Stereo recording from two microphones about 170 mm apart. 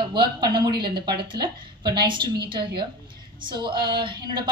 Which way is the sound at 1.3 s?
25° right (ahead or behind).